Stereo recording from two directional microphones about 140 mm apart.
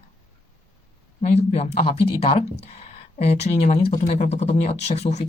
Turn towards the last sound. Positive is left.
turn(degrees=50)  # may be behind; listen again after turning